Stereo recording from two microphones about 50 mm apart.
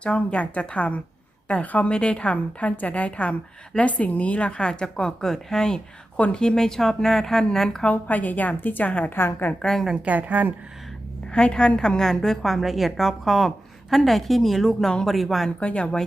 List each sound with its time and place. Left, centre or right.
0.0 s a woman's voice: left
1.9 s a woman's voice: centre
6.1 s a woman's voice: left
6.4 s a woman's voice: centre
7.9 s a woman's voice: left
9.1 s a woman's voice: left
9.6 s a woman's voice: centre
9.9 s speech: right
11.3 s a woman's voice: centre
15.4 s a woman's voice: left